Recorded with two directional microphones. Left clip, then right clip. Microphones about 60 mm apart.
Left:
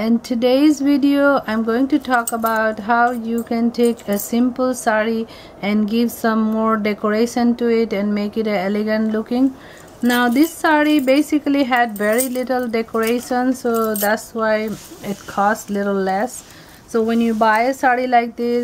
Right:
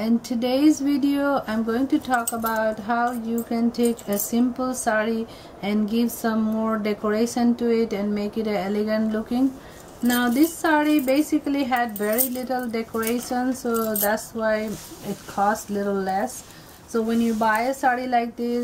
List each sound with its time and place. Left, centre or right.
0.0 s speech: left
10.0 s speech: left
10.3 s speech: left